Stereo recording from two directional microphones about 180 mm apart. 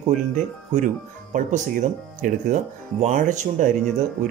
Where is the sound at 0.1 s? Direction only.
45° right (ahead or behind).